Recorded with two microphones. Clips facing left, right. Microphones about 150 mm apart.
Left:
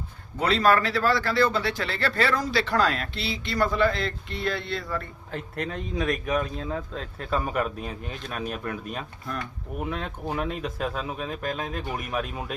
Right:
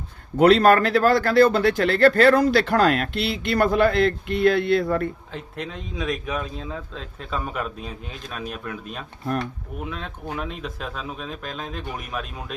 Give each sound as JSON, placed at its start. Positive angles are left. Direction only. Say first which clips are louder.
{"t": 0.3, "sound": "a man's voice", "louder": "right 7 dB", "side_deg": -60}
{"t": 5.3, "sound": "speech", "louder": "left 1 dB", "side_deg": 0}